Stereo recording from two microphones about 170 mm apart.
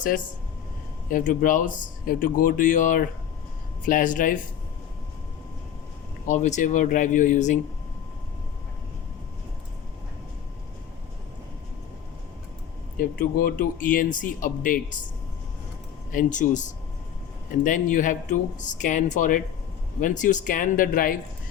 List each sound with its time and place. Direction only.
1.1 s speech: 50° left (ahead or behind)
6.2 s speech: 45° left (ahead or behind)
13.0 s speech: 55° left (ahead or behind)
16.1 s speech: 50° left (ahead or behind)